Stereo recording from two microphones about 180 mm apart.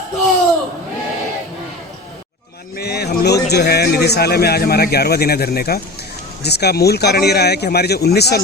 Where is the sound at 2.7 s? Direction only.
65° left (ahead or behind).